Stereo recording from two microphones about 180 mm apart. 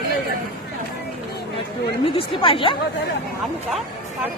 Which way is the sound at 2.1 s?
30° left (ahead or behind).